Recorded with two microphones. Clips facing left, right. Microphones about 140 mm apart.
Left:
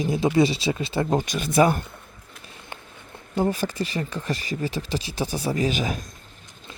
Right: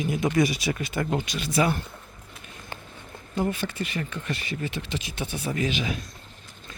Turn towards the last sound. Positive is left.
turn(degrees=40)  # may be behind; listen again after turning